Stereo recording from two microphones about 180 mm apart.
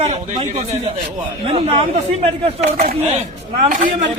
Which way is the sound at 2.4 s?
35° right (ahead or behind).